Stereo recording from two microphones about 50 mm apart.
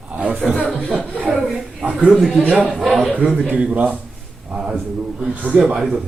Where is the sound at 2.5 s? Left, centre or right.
Right.